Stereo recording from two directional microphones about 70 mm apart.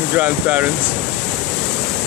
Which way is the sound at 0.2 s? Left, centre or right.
Centre.